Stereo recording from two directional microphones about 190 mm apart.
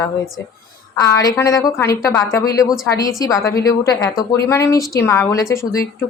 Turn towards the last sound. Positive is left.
turn(degrees=15)  # may be behind; listen again after turning